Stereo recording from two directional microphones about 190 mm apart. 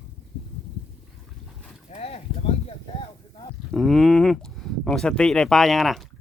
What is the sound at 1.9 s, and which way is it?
Livestock, 35° left (ahead or behind).